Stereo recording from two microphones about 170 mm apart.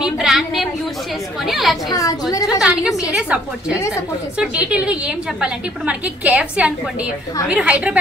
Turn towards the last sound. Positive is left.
turn(degrees=-5)  # may be behind; listen again after turning